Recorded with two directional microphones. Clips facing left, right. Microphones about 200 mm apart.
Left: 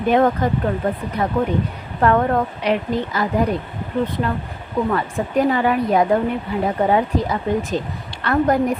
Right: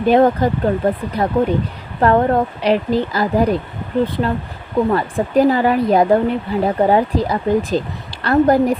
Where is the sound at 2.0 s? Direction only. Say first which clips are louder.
Right 3 dB; 35° right (ahead or behind).